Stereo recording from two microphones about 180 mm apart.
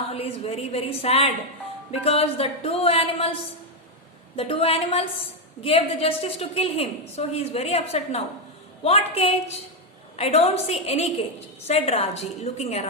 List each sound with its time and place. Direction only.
0.1 s a woman's voice: 35° left (ahead or behind)
4.4 s a woman's voice: 30° left (ahead or behind)